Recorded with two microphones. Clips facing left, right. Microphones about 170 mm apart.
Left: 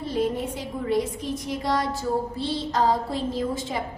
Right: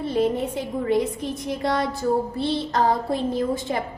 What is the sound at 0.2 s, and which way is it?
A woman's voice, 55° right (ahead or behind).